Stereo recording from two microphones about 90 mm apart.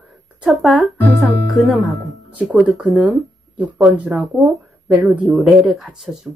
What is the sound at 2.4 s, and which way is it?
Speech, 10° right (ahead or behind).